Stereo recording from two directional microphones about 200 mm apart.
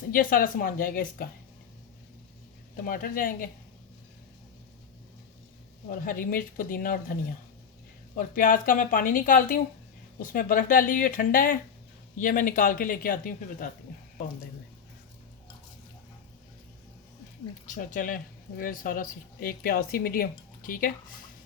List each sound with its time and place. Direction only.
0.1 s speech: 45° left (ahead or behind)
2.8 s speech: 45° left (ahead or behind)
5.9 s speech: 45° left (ahead or behind)
8.1 s speech: 45° left (ahead or behind)
17.7 s speech: 40° left (ahead or behind)